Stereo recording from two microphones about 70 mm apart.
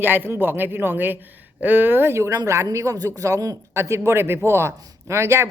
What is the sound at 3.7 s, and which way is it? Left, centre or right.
Speech, right.